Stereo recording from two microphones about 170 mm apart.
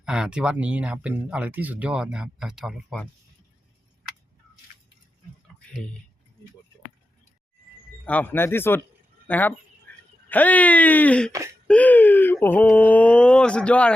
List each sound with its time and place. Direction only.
0.0 s speech: 5° right (ahead or behind)
8.0 s speech: 10° left (ahead or behind)
9.9 s a sound: 10° left (ahead or behind)
10.2 s speech: 10° left (ahead or behind)
11.3 s speech: 20° right (ahead or behind)
11.7 s speech: 10° left (ahead or behind)